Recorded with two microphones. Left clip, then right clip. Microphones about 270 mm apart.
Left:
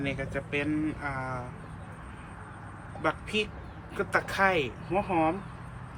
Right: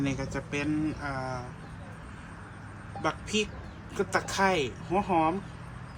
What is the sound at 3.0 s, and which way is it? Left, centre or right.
Speech, centre.